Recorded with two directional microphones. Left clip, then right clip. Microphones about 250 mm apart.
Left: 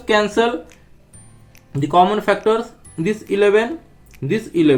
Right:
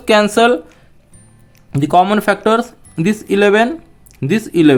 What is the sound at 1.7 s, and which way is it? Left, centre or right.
Speech, right.